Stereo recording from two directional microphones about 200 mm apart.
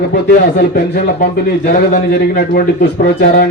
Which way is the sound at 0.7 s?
45° left (ahead or behind).